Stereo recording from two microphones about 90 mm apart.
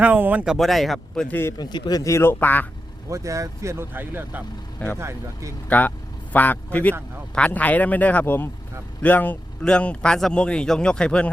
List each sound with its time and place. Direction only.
0.0 s speech: 20° right (ahead or behind)
0.4 s speech: centre (ahead or behind)
1.3 s speech: 25° left (ahead or behind)
1.5 s speech: 50° left (ahead or behind)
2.1 s speech: 25° left (ahead or behind)
3.1 s speech: 35° right (ahead or behind); by 4.4 s 20° right (ahead or behind)
4.9 s speech: 35° right (ahead or behind)
5.6 s a man's voice: 20° left (ahead or behind)